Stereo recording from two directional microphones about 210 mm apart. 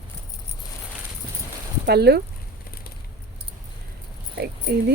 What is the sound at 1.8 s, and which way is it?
Speech, 50° right (ahead or behind).